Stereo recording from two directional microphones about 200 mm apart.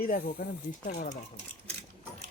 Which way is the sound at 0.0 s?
45° left (ahead or behind).